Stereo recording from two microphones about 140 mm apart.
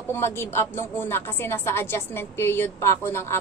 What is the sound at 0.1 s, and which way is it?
A woman's voice, 15° left (ahead or behind).